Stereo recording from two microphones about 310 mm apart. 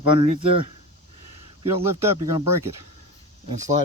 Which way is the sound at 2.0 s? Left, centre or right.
Centre.